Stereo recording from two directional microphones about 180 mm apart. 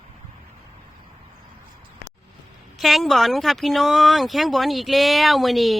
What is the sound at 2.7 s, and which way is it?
Speech, centre (ahead or behind).